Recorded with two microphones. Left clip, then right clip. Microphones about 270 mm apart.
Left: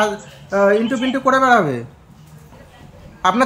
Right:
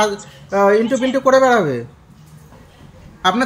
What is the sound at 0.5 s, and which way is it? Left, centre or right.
Speech, centre.